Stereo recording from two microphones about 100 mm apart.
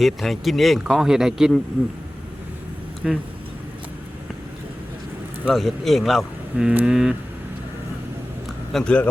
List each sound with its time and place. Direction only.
0.0 s speech: centre (ahead or behind)
3.0 s speech: centre (ahead or behind)
5.5 s speech: centre (ahead or behind)
6.7 s a sound: 5° right (ahead or behind)
8.7 s a man's voice: 10° left (ahead or behind)